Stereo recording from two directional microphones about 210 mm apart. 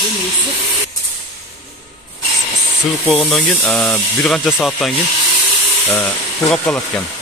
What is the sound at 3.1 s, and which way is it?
Speech, centre (ahead or behind).